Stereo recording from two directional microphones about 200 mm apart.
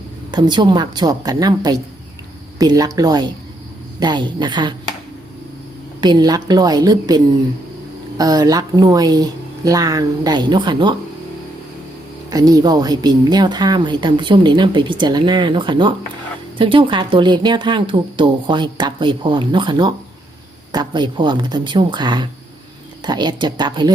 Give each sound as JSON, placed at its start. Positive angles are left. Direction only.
{"t": 0.3, "sound": "speech", "side_deg": -20}
{"t": 6.0, "sound": "speech", "side_deg": -20}
{"t": 8.2, "sound": "speech", "side_deg": -20}
{"t": 12.3, "sound": "speech", "side_deg": -20}